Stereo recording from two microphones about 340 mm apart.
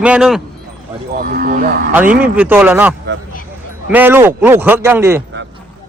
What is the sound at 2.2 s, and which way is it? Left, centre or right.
Speech, centre.